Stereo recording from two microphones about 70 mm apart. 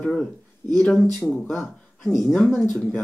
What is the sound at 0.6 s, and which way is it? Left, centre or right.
Speech, left.